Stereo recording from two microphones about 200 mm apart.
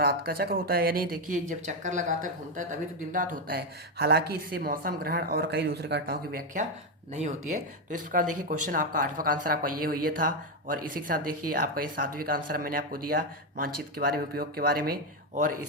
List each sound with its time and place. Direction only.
0.0 s speech: 50° right (ahead or behind)